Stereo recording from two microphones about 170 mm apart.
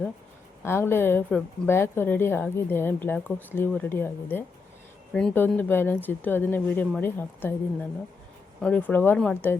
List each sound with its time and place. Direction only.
0.6 s a woman's voice: 15° left (ahead or behind)